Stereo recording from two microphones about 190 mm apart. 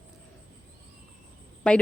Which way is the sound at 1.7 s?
5° left (ahead or behind).